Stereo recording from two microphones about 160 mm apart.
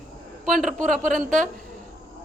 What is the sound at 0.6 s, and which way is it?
Speech, 55° right (ahead or behind).